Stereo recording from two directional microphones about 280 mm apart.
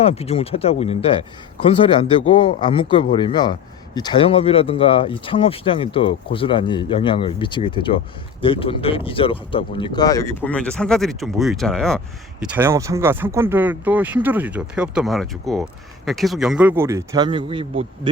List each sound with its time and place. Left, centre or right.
0.0 s speech: left; by 18.1 s centre